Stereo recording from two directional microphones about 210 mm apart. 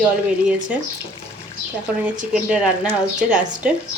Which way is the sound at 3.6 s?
5° right (ahead or behind).